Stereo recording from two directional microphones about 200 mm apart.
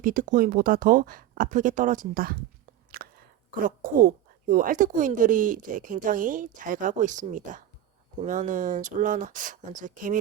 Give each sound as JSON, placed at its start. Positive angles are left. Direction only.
{"t": 0.0, "sound": "speech", "side_deg": -40}
{"t": 2.9, "sound": "chewing", "side_deg": -50}
{"t": 3.6, "sound": "speech", "side_deg": -45}